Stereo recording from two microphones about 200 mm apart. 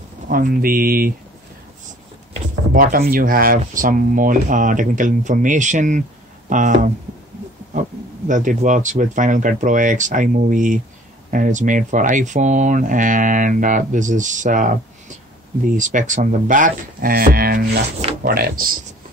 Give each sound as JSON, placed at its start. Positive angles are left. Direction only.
{"t": 0.3, "sound": "speech", "side_deg": -45}
{"t": 2.7, "sound": "speech", "side_deg": -45}
{"t": 8.3, "sound": "speech", "side_deg": -40}